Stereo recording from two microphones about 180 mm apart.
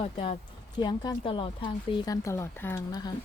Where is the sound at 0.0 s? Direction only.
30° left (ahead or behind).